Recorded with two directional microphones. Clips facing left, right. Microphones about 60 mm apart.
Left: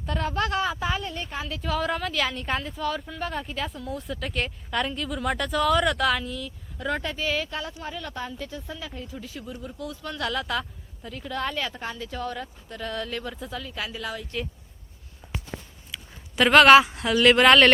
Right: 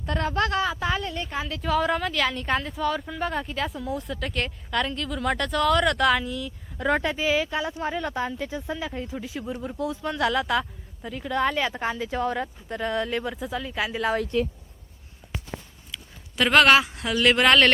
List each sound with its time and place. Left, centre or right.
0.0 s a woman's voice: centre
6.7 s a woman's voice: centre
7.8 s a woman's voice: right; by 11.7 s centre
11.7 s speech: right
13.3 s a woman's voice: centre
13.6 s speech: centre
15.2 s walk: centre
15.9 s speech: centre